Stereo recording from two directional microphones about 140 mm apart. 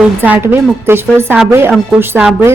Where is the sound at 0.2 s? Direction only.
15° right (ahead or behind).